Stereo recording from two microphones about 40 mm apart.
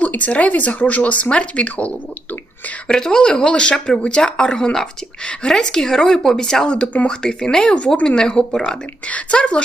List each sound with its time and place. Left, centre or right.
0.0 s speech: left
2.8 s speech: centre
6.7 s speech: left